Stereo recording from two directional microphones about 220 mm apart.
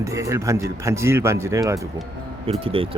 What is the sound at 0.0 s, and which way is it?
Speech, 15° right (ahead or behind).